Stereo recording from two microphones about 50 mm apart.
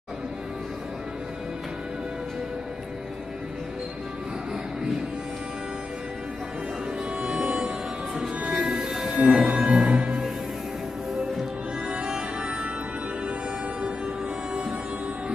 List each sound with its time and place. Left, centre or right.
7.2 s music: right
11.9 s music: centre
13.8 s music: right